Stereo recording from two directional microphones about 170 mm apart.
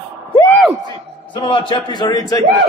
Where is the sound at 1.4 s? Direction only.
30° left (ahead or behind).